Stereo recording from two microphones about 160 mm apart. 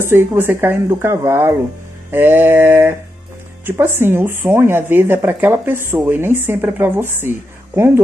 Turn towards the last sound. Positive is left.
turn(degrees=-15)  # may be behind; listen again after turning